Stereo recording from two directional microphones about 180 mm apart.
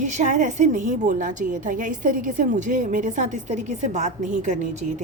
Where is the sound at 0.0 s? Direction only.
40° right (ahead or behind).